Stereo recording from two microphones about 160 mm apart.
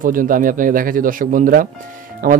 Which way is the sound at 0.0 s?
60° right (ahead or behind).